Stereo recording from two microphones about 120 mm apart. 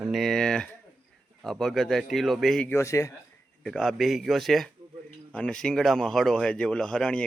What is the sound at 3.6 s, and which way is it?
Speech, 5° left (ahead or behind).